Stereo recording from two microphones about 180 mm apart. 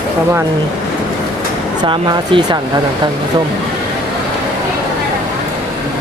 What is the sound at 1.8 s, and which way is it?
Speech, 25° right (ahead or behind).